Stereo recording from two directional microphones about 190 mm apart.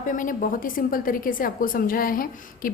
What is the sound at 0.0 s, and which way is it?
A woman's voice, 45° left (ahead or behind).